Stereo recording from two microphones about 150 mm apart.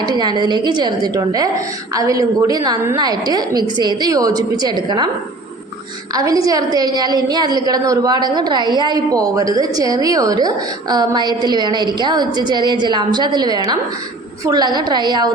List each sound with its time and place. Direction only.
0.0 s a woman's voice: 30° right (ahead or behind)
6.1 s a woman's voice: 25° right (ahead or behind)